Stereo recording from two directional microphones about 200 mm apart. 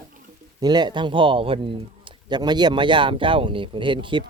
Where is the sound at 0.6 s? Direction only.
20° right (ahead or behind).